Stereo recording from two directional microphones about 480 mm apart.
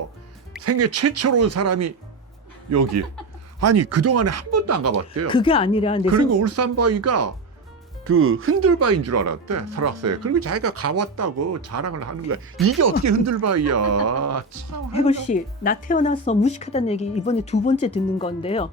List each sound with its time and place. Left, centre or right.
0.5 s speech: right
5.3 s speech: centre
6.1 s speech: right
14.9 s speech: centre